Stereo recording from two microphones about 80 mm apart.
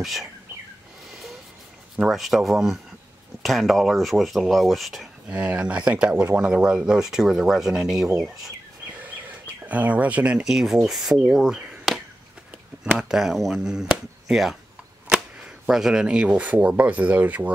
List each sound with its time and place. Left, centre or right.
0.0 s speech: centre
2.0 s speech: centre
5.3 s speech: centre
9.7 s speech: centre
12.9 s speech: centre; by 17.5 s right